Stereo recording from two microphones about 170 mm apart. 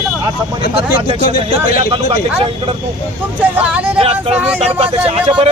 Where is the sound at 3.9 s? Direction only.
35° right (ahead or behind).